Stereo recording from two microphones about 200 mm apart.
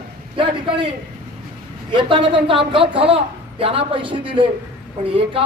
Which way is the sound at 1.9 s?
25° right (ahead or behind).